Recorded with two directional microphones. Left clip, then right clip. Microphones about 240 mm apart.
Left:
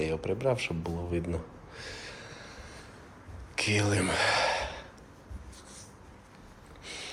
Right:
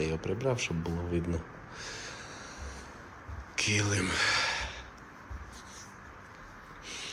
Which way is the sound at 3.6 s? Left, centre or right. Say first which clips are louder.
Left 2 dB; centre.